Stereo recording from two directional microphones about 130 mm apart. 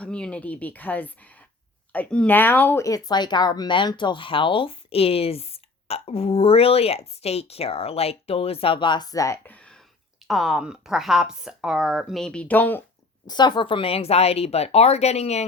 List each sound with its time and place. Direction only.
0.0 s a woman's voice: 10° left (ahead or behind)
2.8 s speech: 30° left (ahead or behind)
9.5 s a sound: 10° left (ahead or behind)
10.2 s speech: centre (ahead or behind); by 12.8 s 15° left (ahead or behind)
13.2 s speech: 35° left (ahead or behind); by 15.4 s 55° left (ahead or behind)